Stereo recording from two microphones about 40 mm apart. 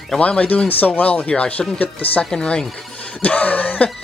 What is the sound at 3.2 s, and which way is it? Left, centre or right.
Speech, left.